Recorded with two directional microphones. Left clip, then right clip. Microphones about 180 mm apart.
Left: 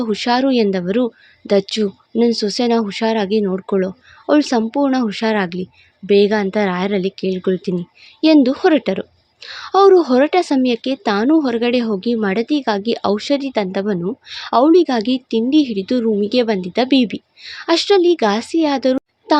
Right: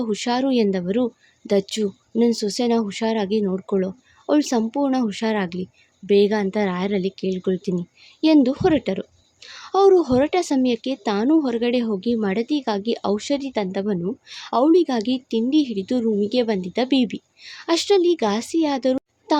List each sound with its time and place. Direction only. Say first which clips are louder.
0.0 s speech: left 6 dB; centre (ahead or behind)